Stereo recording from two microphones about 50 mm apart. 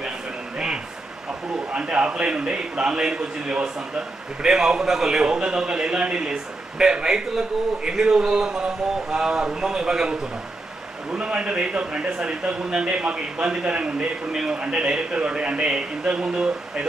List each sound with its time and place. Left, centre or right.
1.7 s a man's voice: right
11.1 s a man's voice: right
14.3 s a man's voice: centre